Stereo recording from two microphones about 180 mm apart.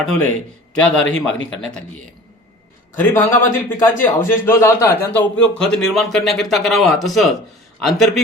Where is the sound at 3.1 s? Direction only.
15° left (ahead or behind).